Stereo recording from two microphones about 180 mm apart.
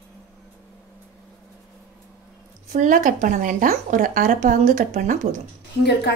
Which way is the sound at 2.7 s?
45° right (ahead or behind).